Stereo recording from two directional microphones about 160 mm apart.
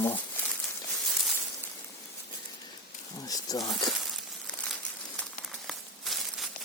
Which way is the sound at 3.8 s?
5° left (ahead or behind).